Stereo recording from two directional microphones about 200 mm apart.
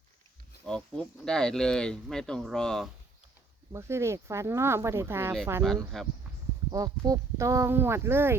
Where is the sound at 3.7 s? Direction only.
15° right (ahead or behind).